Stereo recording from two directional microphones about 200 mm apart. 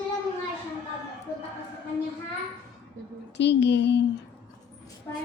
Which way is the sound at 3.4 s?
60° left (ahead or behind).